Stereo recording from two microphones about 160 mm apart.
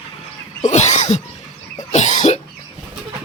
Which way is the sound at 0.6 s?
45° left (ahead or behind).